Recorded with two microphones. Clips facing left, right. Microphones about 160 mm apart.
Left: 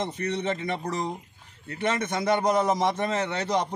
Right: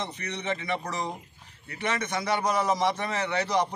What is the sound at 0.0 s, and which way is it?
A man's voice, 50° left (ahead or behind).